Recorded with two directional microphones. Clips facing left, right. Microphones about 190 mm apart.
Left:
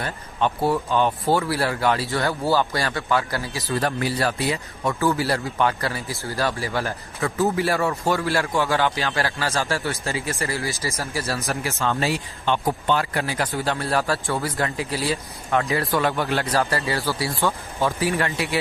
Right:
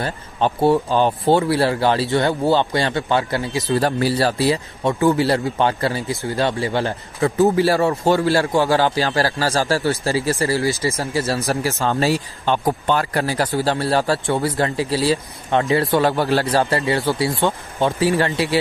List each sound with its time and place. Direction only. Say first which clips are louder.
0.0 s speech: right 3 dB; 30° right (ahead or behind)